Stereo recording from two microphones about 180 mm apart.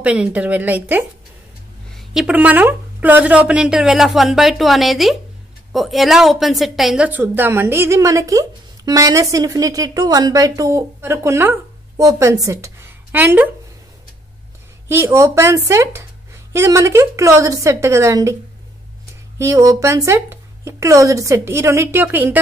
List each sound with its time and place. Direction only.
0.0 s a woman's voice: 5° right (ahead or behind)
14.9 s a woman's voice: 15° right (ahead or behind)
19.3 s a woman's voice: 15° right (ahead or behind)